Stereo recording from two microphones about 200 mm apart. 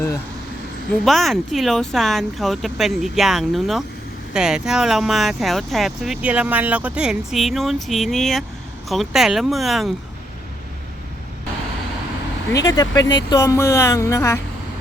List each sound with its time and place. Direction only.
1.0 s speech: centre (ahead or behind)
12.5 s speech: 20° left (ahead or behind)